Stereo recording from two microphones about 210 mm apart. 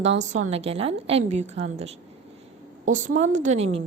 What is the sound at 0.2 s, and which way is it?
A woman's voice, 35° right (ahead or behind).